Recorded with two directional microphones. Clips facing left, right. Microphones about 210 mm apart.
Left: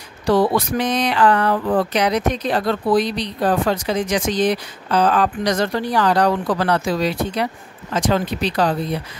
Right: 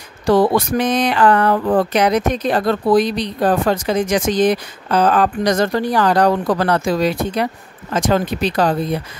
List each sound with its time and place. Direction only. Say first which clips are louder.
0.3 s speech: right 3 dB; 50° right (ahead or behind)